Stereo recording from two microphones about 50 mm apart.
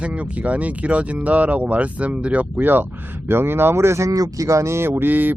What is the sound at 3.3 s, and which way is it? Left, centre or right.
Speech, right.